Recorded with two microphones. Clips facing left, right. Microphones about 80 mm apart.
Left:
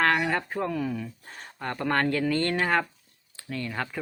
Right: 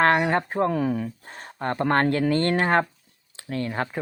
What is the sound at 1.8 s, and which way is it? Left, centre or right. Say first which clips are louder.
Speech: right 4 dB; right.